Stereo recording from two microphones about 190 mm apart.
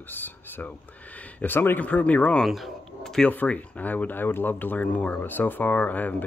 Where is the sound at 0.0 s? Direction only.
10° left (ahead or behind).